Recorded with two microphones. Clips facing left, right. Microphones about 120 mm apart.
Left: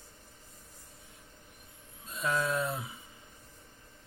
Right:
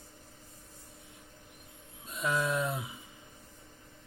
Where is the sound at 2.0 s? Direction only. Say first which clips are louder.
Even; 15° right (ahead or behind).